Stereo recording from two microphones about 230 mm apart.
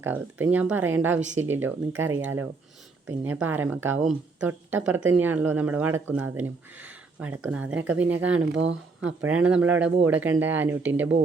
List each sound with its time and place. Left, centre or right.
0.0 s speech: centre
8.2 s speech: right
9.0 s speech: centre